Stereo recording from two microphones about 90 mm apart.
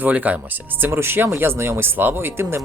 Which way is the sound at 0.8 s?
25° right (ahead or behind).